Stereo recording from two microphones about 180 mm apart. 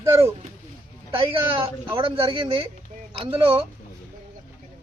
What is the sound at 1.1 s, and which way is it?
Speech, 30° right (ahead or behind).